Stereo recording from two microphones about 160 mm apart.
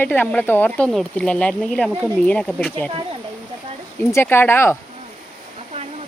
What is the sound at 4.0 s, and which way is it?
Speech, 15° left (ahead or behind).